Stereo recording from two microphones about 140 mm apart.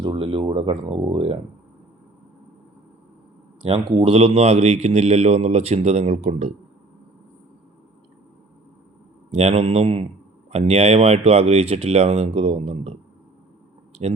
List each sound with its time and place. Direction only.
0.0 s speech: 40° right (ahead or behind)
3.8 s speech: 40° right (ahead or behind)
9.3 s speech: 45° right (ahead or behind)